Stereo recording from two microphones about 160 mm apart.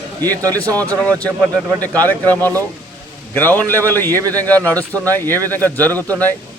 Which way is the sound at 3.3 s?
10° left (ahead or behind).